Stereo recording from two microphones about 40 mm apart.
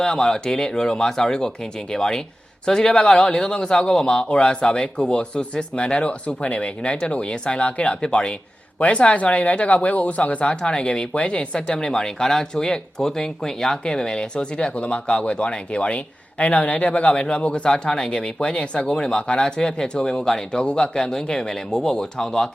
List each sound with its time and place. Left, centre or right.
0.0 s speech: centre; by 10.5 s left
10.5 s speech: left
11.1 s speech: left; by 22.4 s centre